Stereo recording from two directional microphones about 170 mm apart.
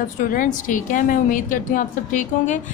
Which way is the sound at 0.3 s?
50° left (ahead or behind).